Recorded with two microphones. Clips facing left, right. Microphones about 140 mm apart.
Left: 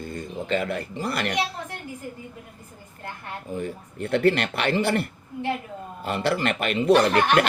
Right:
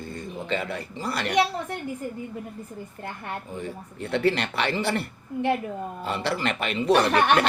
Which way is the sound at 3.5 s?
50° left (ahead or behind).